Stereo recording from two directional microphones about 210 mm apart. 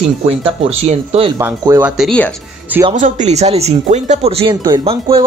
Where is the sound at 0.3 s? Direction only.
30° right (ahead or behind).